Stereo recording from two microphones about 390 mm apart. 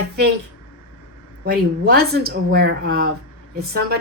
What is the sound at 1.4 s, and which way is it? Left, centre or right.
A woman's voice, right.